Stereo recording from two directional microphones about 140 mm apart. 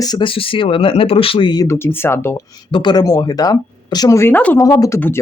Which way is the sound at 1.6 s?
20° left (ahead or behind).